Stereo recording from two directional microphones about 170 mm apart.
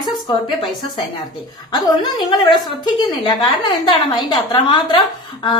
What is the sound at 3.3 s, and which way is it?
A woman's voice, 25° left (ahead or behind).